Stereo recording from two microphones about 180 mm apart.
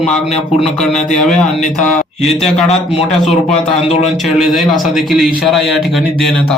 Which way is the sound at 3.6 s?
35° left (ahead or behind).